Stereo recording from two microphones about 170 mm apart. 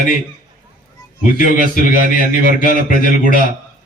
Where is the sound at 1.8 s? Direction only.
55° left (ahead or behind).